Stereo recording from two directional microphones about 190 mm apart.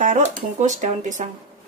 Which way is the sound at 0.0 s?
40° right (ahead or behind).